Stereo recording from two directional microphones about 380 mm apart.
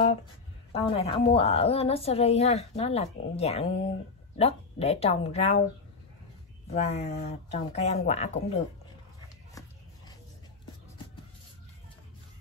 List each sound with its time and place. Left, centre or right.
0.7 s a woman's voice: centre
6.7 s a woman's voice: centre